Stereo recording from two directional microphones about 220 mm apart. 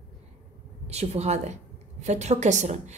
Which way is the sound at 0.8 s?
30° right (ahead or behind).